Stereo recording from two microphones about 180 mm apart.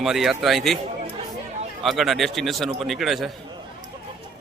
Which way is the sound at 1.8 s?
Centre (ahead or behind).